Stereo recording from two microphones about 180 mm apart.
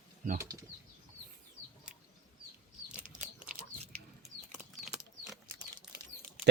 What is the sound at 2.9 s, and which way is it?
Crunch, 45° right (ahead or behind).